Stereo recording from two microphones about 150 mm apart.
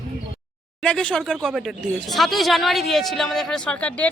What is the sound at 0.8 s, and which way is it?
Speech, 5° left (ahead or behind).